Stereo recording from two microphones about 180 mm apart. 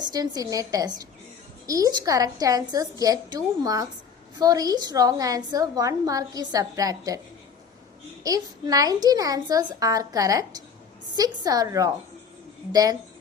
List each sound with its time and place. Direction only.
0.0 s a woman's voice: 20° right (ahead or behind)
8.2 s a woman's voice: 20° right (ahead or behind)